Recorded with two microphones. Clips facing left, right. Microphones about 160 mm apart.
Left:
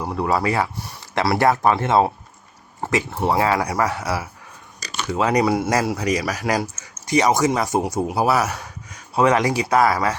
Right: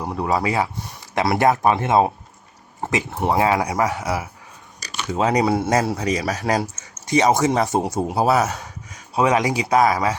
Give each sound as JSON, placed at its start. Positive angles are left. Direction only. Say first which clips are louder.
{"t": 0.0, "sound": "speech", "louder": "left 1 dB", "side_deg": -20}